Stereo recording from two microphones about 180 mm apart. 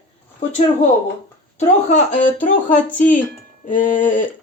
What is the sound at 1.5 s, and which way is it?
Speech, 40° left (ahead or behind).